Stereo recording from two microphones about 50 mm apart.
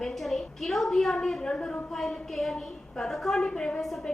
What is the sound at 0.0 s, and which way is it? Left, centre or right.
A woman's voice, centre.